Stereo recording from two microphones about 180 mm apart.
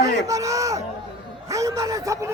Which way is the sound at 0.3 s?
20° right (ahead or behind).